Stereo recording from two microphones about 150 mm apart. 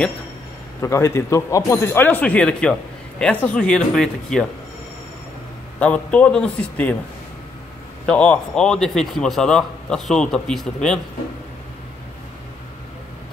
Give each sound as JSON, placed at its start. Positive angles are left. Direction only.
{"t": 0.7, "sound": "a man's voice", "side_deg": 20}
{"t": 5.8, "sound": "speech", "side_deg": 10}
{"t": 8.1, "sound": "a man's voice", "side_deg": 5}